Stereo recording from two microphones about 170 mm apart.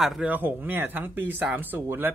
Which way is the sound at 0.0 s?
5° right (ahead or behind).